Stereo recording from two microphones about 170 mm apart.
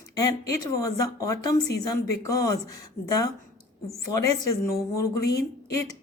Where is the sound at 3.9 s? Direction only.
20° left (ahead or behind).